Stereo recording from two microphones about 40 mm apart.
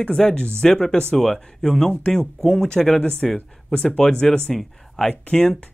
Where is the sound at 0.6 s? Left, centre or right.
Centre.